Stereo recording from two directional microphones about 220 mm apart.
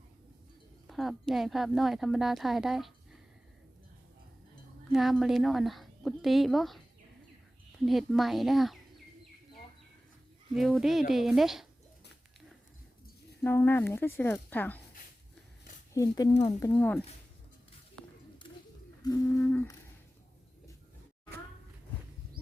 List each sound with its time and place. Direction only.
0.9 s speech: centre (ahead or behind)
4.9 s speech: centre (ahead or behind)
7.9 s speech: centre (ahead or behind)
10.5 s speech: centre (ahead or behind)
13.4 s speech: 10° left (ahead or behind)
16.0 s speech: 15° left (ahead or behind)
16.3 s speech: 30° left (ahead or behind)
16.6 s speech: 10° left (ahead or behind)
19.0 s speech: 10° left (ahead or behind)